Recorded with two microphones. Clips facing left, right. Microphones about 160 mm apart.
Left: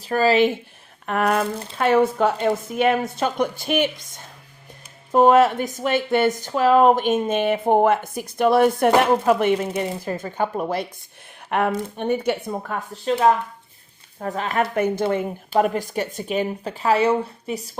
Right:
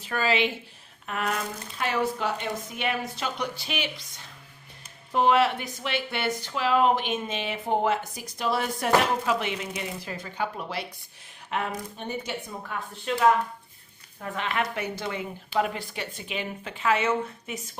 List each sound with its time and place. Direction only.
0.0 s speech: 35° left (ahead or behind)
1.0 s a woman's voice: 60° left (ahead or behind)
11.4 s a woman's voice: 60° left (ahead or behind)
13.1 s speech: 35° left (ahead or behind)